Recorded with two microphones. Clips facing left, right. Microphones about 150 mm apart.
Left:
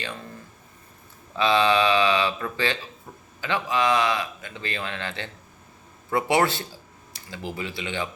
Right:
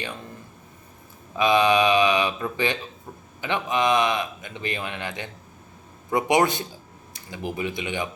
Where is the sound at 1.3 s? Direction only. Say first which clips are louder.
Right 2 dB; 15° right (ahead or behind).